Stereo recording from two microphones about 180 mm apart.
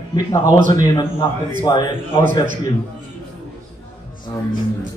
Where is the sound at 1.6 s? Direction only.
25° left (ahead or behind).